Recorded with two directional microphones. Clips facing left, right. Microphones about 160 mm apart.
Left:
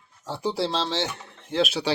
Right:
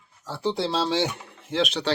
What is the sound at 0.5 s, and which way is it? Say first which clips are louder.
Speech: right 3 dB; 5° right (ahead or behind).